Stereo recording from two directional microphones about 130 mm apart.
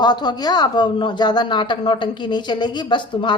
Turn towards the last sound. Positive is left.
turn(degrees=35)  # may be behind; listen again after turning